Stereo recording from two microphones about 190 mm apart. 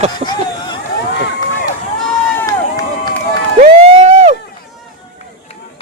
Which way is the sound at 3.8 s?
35° right (ahead or behind).